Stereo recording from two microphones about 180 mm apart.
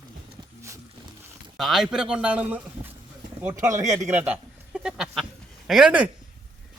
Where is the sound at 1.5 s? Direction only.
Centre (ahead or behind).